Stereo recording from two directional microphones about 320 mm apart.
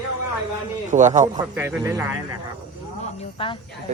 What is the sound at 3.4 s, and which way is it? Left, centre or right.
Speech, centre.